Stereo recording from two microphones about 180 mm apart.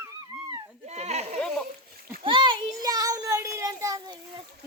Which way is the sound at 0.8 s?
35° right (ahead or behind).